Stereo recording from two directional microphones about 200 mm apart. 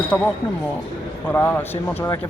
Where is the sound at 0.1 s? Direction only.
10° left (ahead or behind).